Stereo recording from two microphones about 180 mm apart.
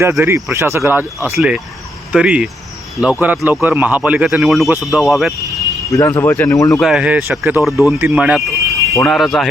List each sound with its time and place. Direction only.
0.0 s a man's voice: 15° right (ahead or behind)
5.9 s speech: 15° left (ahead or behind)
6.7 s speech: centre (ahead or behind)
7.6 s a man's voice: centre (ahead or behind)